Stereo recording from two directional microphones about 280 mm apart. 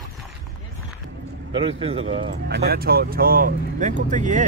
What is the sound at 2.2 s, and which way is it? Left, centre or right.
Speech, right.